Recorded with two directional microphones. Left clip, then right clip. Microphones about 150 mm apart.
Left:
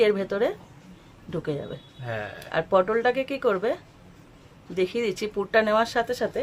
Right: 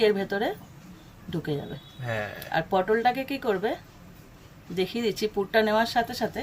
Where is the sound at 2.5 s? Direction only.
80° left.